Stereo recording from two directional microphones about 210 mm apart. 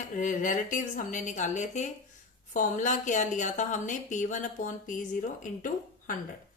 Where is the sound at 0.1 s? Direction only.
35° left (ahead or behind).